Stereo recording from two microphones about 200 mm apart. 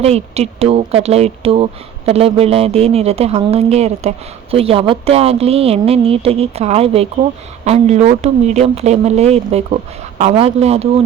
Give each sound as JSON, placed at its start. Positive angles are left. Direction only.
{"t": 0.0, "sound": "a woman's voice", "side_deg": -30}